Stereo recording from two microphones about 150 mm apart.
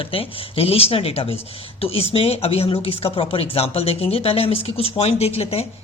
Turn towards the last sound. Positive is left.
turn(degrees=40)  # may be behind; listen again after turning